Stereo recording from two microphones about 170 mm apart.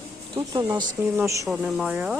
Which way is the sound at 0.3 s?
20° right (ahead or behind).